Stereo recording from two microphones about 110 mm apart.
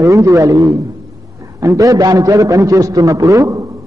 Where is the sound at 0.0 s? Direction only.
30° right (ahead or behind).